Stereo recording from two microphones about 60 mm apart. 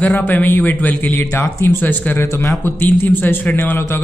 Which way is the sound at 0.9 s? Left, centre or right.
Left.